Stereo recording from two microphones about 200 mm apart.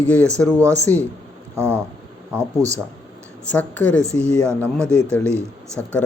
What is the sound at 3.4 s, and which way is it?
Speech, 10° left (ahead or behind).